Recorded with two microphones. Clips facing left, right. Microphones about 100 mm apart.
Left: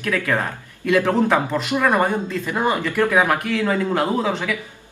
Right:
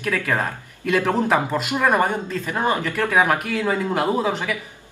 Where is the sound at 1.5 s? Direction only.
20° right (ahead or behind).